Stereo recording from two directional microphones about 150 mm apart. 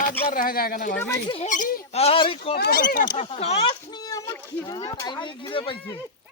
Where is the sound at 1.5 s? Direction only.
60° left (ahead or behind).